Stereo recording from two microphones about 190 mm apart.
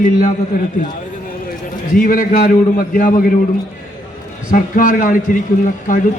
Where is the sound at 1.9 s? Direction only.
45° left (ahead or behind).